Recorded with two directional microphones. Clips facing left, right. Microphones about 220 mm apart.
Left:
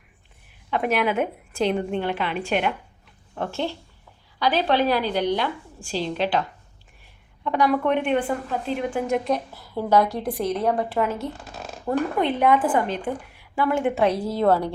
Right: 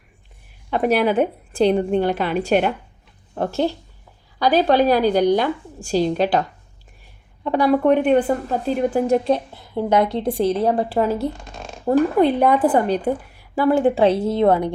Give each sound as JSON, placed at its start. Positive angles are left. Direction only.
{"t": 0.7, "sound": "a woman's voice", "side_deg": -35}
{"t": 7.4, "sound": "a woman's voice", "side_deg": -35}
{"t": 11.3, "sound": "zipper", "side_deg": 5}
{"t": 11.9, "sound": "a woman's voice", "side_deg": -35}